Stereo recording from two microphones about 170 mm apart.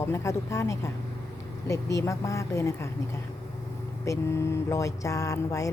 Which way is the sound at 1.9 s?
20° left (ahead or behind).